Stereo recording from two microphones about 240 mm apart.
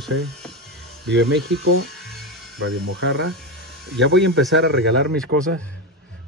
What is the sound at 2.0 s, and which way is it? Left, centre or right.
Music, centre.